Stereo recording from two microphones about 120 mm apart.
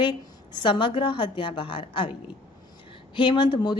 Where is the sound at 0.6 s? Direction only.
40° left (ahead or behind).